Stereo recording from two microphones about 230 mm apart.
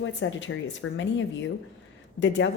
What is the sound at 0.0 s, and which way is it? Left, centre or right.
Speech, left.